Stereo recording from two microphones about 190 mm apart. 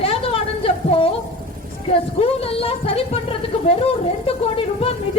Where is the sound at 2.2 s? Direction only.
30° left (ahead or behind).